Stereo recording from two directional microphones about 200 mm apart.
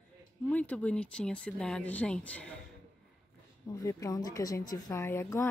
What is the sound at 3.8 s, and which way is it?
A woman's voice, 15° left (ahead or behind).